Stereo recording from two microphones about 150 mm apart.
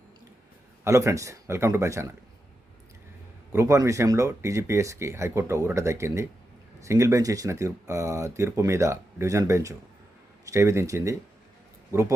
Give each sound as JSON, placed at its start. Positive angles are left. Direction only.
{"t": 0.9, "sound": "speech", "side_deg": -20}
{"t": 3.5, "sound": "speech", "side_deg": -20}